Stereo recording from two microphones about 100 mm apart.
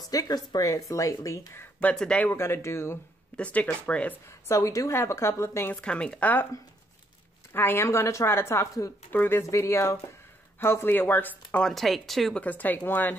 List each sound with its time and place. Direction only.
0.1 s speech: 40° left (ahead or behind); by 2.2 s 10° left (ahead or behind)
2.2 s speech: 25° left (ahead or behind)
3.3 s speech: 15° left (ahead or behind)
4.3 s speech: 30° left (ahead or behind)
5.8 s speech: 10° left (ahead or behind)
7.5 s speech: 20° left (ahead or behind)
9.1 s speech: 20° left (ahead or behind)
11.6 s speech: centre (ahead or behind)
12.4 s speech: 15° left (ahead or behind)